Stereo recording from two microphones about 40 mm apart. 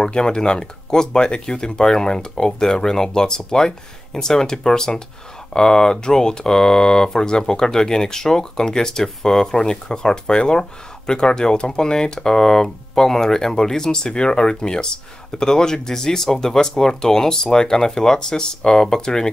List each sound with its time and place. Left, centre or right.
0.0 s speech: centre